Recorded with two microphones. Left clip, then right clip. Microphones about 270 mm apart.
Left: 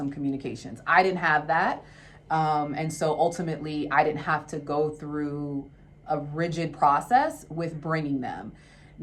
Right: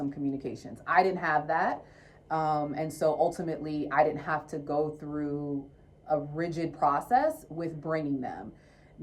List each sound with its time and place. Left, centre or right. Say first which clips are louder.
0.1 s speech: left 3 dB; centre